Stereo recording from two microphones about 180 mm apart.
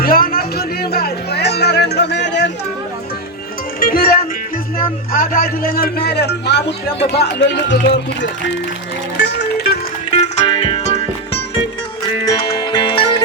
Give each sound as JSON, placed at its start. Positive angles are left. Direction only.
{"t": 0.0, "sound": "music", "side_deg": 55}
{"t": 3.8, "sound": "speech", "side_deg": 55}
{"t": 9.1, "sound": "music", "side_deg": 80}
{"t": 10.2, "sound": "music", "side_deg": 35}
{"t": 12.2, "sound": "music", "side_deg": 20}